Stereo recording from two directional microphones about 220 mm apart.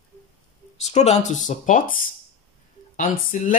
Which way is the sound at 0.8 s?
30° left (ahead or behind).